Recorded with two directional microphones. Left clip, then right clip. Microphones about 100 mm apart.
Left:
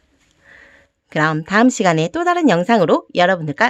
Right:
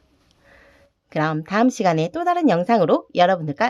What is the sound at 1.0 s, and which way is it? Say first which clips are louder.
Speech: left 5 dB; 35° left (ahead or behind).